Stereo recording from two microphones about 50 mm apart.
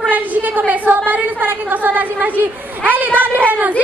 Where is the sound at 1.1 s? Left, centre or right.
Right.